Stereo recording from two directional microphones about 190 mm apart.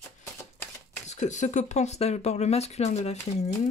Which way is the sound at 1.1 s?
40° left (ahead or behind).